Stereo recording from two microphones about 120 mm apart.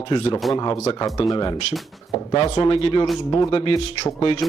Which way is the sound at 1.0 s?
25° left (ahead or behind).